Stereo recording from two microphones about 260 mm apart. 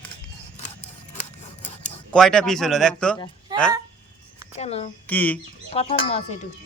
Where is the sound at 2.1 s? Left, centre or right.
Centre.